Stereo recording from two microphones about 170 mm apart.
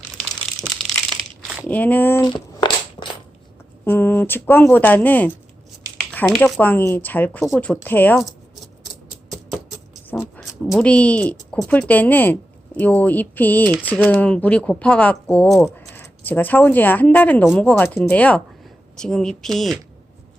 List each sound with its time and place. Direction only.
1.6 s speech: 10° left (ahead or behind)
3.8 s speech: 10° left (ahead or behind)
7.4 s a woman's voice: centre (ahead or behind)
7.9 s speech: 10° left (ahead or behind)
10.1 s a sound: 10° left (ahead or behind)
10.4 s a woman's voice: centre (ahead or behind)